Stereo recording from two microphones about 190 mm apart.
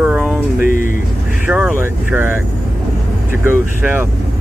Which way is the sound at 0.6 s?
45° left (ahead or behind).